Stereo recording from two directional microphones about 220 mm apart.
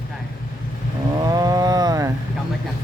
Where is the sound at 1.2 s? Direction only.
15° right (ahead or behind).